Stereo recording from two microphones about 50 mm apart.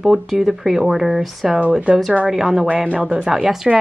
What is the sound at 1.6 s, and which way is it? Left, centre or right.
A woman's voice, right.